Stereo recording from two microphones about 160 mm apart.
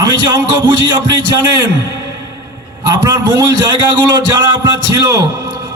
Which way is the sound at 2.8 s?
20° right (ahead or behind).